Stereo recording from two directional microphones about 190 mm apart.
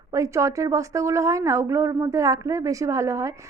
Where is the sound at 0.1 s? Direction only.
15° right (ahead or behind).